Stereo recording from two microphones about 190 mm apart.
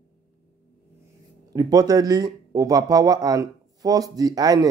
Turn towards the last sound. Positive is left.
turn(degrees=-20)  # may be behind; listen again after turning